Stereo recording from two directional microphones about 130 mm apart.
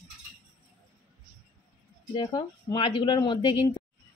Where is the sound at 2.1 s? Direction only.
35° left (ahead or behind).